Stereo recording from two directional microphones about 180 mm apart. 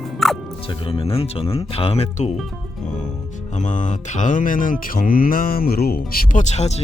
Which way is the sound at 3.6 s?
40° left (ahead or behind).